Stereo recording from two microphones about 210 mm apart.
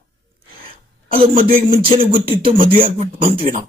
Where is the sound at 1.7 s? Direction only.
25° right (ahead or behind).